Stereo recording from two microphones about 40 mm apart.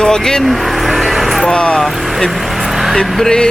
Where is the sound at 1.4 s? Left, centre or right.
Centre.